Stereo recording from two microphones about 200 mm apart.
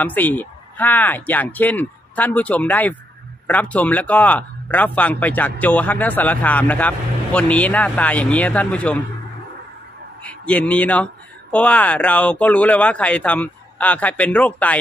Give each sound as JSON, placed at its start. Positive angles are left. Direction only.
{"t": 0.0, "sound": "a man's voice", "side_deg": 10}
{"t": 10.2, "sound": "a man's voice", "side_deg": 5}